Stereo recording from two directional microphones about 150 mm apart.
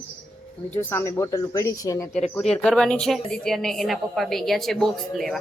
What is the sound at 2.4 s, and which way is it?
A woman's voice, 5° left (ahead or behind).